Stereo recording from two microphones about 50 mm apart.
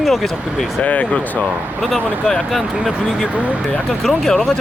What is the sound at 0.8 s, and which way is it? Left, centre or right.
Speech, left.